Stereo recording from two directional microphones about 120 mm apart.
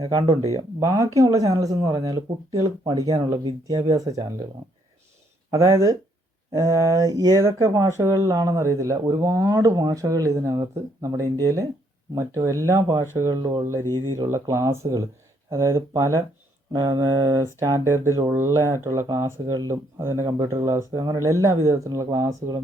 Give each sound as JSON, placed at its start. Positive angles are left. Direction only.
{"t": 0.5, "sound": "speech", "side_deg": -30}
{"t": 5.5, "sound": "speech", "side_deg": -25}